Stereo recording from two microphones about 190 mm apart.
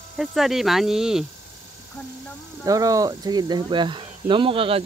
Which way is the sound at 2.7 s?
20° right (ahead or behind).